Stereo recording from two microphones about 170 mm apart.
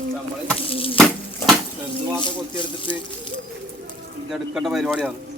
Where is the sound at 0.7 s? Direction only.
30° left (ahead or behind).